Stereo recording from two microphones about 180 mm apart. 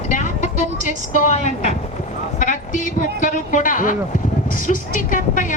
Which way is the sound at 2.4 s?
45° left (ahead or behind).